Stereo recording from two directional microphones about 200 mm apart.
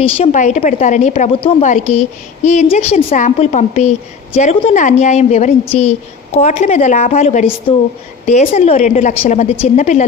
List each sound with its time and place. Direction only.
0.0 s a woman's voice: 35° left (ahead or behind)